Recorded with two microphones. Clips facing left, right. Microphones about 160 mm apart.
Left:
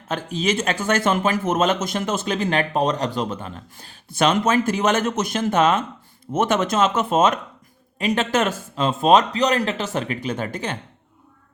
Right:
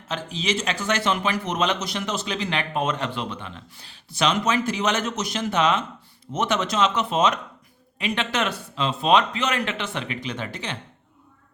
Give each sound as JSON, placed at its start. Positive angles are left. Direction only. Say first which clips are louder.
{"t": 0.1, "sound": "speech", "louder": "left 4 dB", "side_deg": 50}